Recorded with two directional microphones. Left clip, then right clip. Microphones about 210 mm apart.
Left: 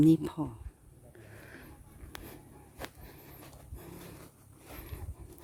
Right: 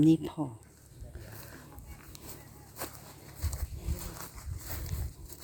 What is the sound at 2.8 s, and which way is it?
Walk, 60° right (ahead or behind).